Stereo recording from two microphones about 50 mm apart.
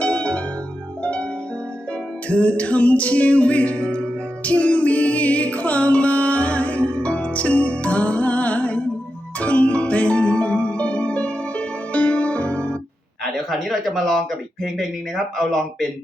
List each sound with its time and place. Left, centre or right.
0.0 s music: left
1.0 s harp: left
2.2 s music: left
13.3 s speech: centre